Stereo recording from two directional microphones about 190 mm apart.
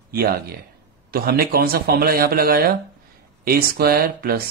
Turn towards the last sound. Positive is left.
turn(degrees=-50)  # may be behind; listen again after turning